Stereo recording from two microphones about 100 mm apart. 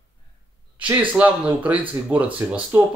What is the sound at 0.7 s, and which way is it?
Speech, 15° right (ahead or behind).